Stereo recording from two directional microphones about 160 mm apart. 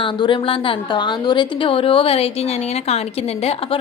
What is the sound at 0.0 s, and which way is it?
A woman's voice, 30° left (ahead or behind).